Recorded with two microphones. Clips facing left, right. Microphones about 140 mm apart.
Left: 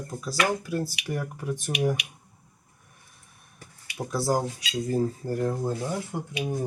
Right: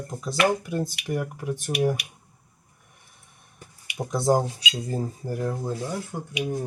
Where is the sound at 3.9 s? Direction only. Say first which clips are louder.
Right 4 dB; 20° right (ahead or behind).